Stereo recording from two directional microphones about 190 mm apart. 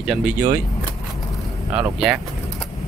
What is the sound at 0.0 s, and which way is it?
Speech, 5° right (ahead or behind).